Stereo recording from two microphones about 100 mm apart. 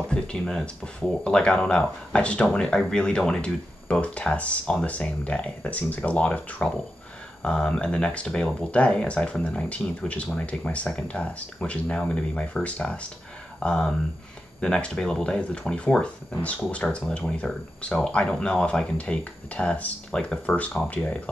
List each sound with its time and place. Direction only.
0.1 s speech: 5° left (ahead or behind)